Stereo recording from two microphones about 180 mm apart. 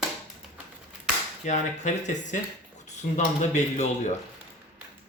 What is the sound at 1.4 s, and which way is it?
Speech, 45° left (ahead or behind).